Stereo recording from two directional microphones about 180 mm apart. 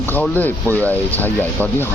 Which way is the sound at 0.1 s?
10° left (ahead or behind).